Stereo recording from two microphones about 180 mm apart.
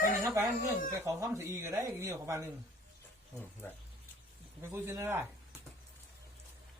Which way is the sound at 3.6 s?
15° left (ahead or behind).